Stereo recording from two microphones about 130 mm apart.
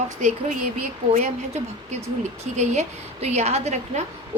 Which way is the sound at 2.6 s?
60° right (ahead or behind).